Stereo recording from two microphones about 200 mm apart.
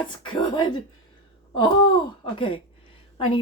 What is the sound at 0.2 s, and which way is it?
Speech, 20° left (ahead or behind).